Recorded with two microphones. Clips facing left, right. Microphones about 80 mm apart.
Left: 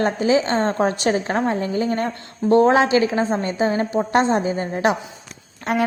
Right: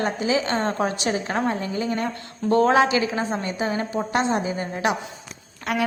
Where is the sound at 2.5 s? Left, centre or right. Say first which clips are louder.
Left 3 dB; left.